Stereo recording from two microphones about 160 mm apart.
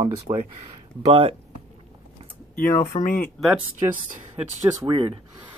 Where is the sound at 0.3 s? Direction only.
30° right (ahead or behind).